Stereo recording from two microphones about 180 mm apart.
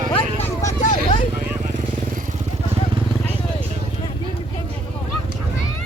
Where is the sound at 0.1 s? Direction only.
30° left (ahead or behind).